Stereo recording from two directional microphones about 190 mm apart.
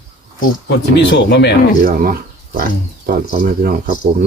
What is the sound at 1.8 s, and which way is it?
Speech, 50° right (ahead or behind).